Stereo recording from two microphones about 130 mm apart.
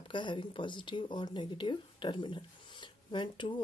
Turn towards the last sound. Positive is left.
turn(degrees=35)  # may be behind; listen again after turning